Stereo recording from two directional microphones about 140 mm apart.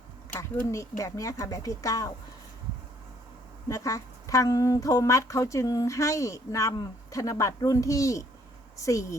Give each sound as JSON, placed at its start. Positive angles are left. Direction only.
{"t": 0.3, "sound": "a woman's voice", "side_deg": 20}
{"t": 3.7, "sound": "a woman's voice", "side_deg": 20}